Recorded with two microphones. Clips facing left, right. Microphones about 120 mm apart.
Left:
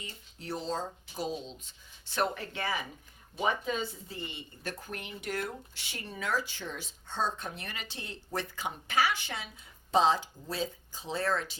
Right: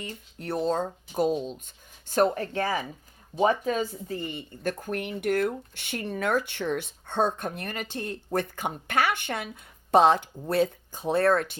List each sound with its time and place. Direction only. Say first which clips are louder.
0.0 s speech: right 8 dB; 55° right (ahead or behind)